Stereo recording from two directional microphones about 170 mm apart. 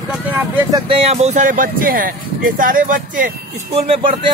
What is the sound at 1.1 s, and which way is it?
Speech, 40° right (ahead or behind).